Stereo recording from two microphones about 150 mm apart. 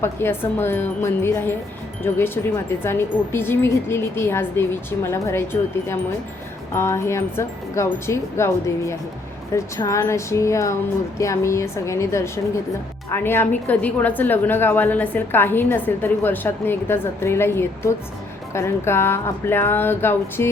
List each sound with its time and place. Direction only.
0.0 s a woman's voice: 15° left (ahead or behind)